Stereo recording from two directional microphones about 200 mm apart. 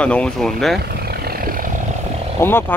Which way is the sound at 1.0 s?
50° right (ahead or behind).